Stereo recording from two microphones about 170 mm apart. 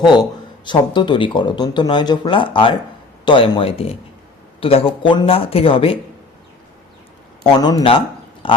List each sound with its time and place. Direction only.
0.0 s speech: 25° left (ahead or behind)
7.4 s speech: 25° left (ahead or behind)